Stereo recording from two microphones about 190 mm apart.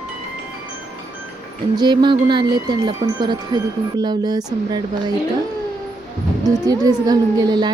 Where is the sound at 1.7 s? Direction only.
25° right (ahead or behind).